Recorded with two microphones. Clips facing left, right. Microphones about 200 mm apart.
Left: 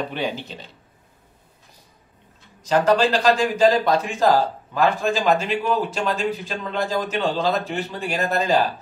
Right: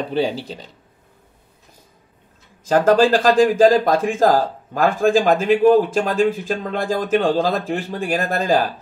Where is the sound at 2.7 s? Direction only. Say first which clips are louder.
Right 4 dB; 50° right (ahead or behind).